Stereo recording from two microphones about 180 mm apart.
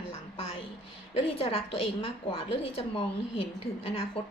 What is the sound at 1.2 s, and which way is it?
A woman's voice, 35° left (ahead or behind).